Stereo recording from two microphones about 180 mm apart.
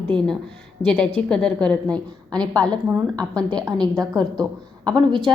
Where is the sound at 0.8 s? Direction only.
5° left (ahead or behind).